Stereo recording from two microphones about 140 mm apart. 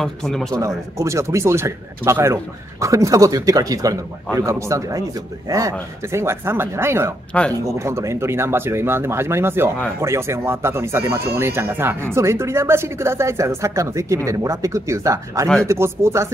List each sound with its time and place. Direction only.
0.0 s speech: 5° left (ahead or behind)
0.5 s speech: 20° right (ahead or behind)